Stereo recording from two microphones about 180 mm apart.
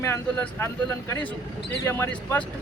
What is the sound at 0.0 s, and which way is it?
Speech, 15° left (ahead or behind).